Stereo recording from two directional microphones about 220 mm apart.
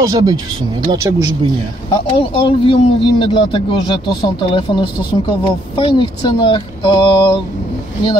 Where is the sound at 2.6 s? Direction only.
25° left (ahead or behind).